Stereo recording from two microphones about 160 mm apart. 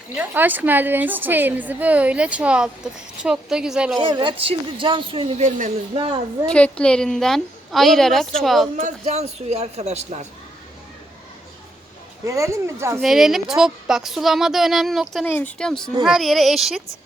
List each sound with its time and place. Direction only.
0.2 s a woman's voice: 10° right (ahead or behind)
3.9 s speech: 30° right (ahead or behind)
5.5 s speech: 50° right (ahead or behind)
6.0 s speech: 35° right (ahead or behind)
6.5 s speech: 5° left (ahead or behind)
8.7 s speech: 45° right (ahead or behind)
12.2 s a woman's voice: 20° right (ahead or behind)
13.0 s speech: centre (ahead or behind)
15.3 s speech: 10° left (ahead or behind)